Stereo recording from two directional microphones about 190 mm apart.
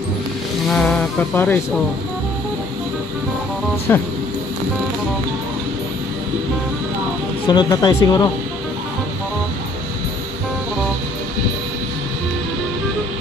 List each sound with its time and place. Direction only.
0.7 s music: 5° left (ahead or behind)
3.9 s speech: 10° left (ahead or behind)
7.4 s speech: 20° left (ahead or behind)